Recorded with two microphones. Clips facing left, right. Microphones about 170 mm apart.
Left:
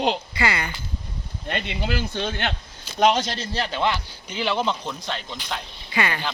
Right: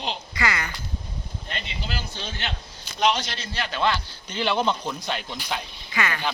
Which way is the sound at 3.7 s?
20° left (ahead or behind).